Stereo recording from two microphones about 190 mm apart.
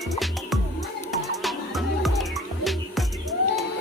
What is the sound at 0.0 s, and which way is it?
Music, centre (ahead or behind).